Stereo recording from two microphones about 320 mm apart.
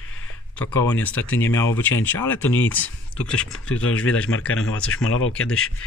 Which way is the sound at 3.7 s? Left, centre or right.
Left.